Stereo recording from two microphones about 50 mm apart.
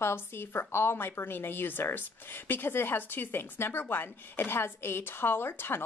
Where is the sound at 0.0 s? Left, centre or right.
Left.